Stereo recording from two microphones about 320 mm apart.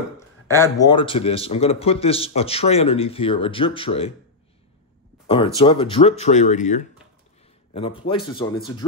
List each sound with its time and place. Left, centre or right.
0.5 s a man's voice: centre
5.3 s a man's voice: centre